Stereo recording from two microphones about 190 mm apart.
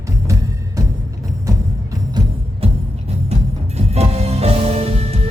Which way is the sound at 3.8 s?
35° right (ahead or behind).